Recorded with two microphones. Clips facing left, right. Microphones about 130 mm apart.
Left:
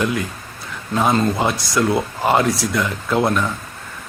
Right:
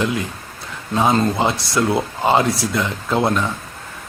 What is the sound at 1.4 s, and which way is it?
Speech, 25° right (ahead or behind).